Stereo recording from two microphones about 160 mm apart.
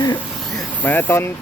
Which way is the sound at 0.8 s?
10° left (ahead or behind).